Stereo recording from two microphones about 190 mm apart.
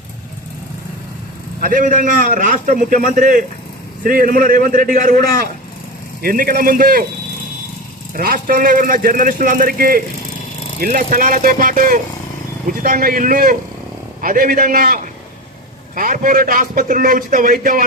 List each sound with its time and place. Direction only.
1.6 s a man's voice: 45° right (ahead or behind)
8.1 s a man's voice: 50° right (ahead or behind)